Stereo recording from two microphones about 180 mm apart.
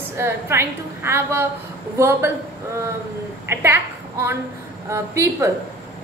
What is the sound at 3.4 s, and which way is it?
A woman's voice, 15° right (ahead or behind).